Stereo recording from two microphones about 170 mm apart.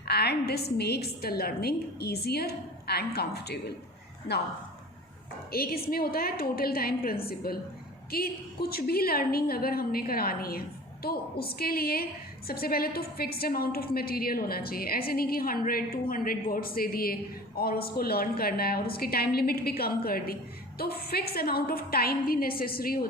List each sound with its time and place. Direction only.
0.1 s a woman's voice: 70° left (ahead or behind)
5.5 s a woman's voice: 60° left (ahead or behind)